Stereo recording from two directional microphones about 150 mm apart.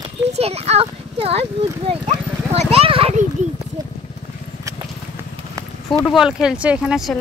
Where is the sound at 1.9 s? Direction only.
40° right (ahead or behind).